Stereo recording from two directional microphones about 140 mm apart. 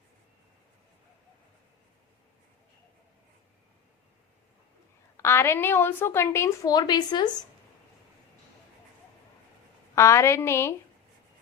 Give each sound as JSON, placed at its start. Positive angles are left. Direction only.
{"t": 5.1, "sound": "a woman's voice", "side_deg": 20}
{"t": 9.9, "sound": "a woman's voice", "side_deg": 20}